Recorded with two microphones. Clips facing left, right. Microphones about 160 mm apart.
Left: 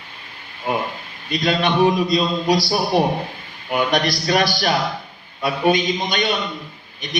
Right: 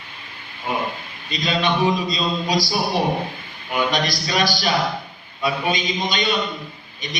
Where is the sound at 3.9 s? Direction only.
60° left (ahead or behind).